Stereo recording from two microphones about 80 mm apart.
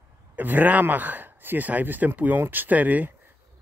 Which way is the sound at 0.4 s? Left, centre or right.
Right.